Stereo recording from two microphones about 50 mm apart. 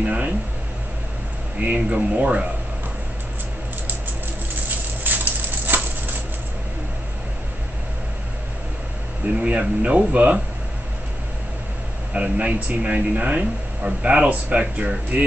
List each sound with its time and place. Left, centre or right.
0.0 s speech: right
1.6 s speech: right
5.0 s a sound: right
9.4 s speech: right
12.1 s speech: right